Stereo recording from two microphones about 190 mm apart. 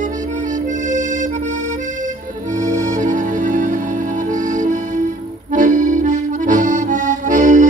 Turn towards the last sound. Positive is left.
turn(degrees=-40)  # may be behind; listen again after turning